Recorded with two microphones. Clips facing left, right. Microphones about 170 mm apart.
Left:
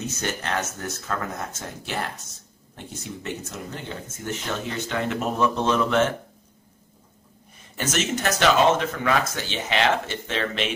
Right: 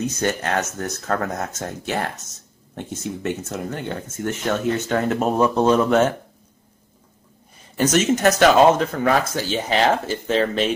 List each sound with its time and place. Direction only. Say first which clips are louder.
0.4 s speech: right 5 dB; 45° right (ahead or behind)
1.1 s speech: right 7 dB; 60° right (ahead or behind)
1.6 s speech: right 6 dB; 50° right (ahead or behind)
7.7 s speech: right 8 dB; 40° right (ahead or behind)